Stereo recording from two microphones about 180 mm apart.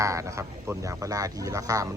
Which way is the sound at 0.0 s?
15° right (ahead or behind).